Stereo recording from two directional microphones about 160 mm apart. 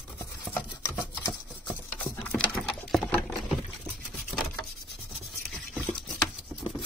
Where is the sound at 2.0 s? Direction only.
10° left (ahead or behind).